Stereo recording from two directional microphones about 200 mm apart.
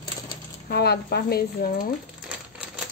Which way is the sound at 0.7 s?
55° left (ahead or behind).